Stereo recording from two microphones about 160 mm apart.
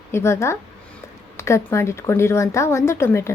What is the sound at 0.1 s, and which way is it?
A woman's voice, 15° left (ahead or behind).